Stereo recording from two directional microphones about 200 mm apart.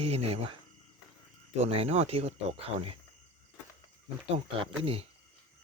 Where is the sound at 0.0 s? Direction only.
30° right (ahead or behind).